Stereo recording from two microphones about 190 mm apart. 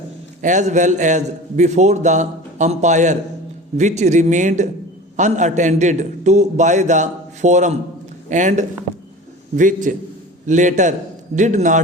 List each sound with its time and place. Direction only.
0.4 s a man's voice: 40° right (ahead or behind)